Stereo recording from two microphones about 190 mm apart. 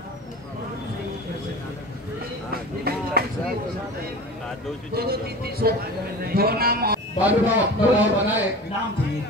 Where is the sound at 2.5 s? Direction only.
55° right (ahead or behind).